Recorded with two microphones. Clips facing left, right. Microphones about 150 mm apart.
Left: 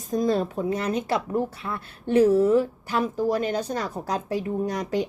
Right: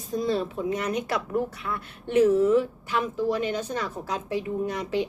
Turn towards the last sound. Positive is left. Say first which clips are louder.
# left 1 dB
turn(degrees=40)  # may be behind; listen again after turning